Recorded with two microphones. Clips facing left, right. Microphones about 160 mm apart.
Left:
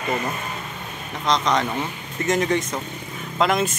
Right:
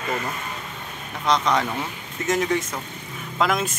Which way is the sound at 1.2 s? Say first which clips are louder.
Even; 5° right (ahead or behind).